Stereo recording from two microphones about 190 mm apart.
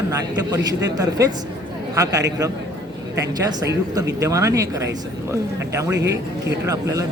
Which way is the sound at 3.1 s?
20° right (ahead or behind).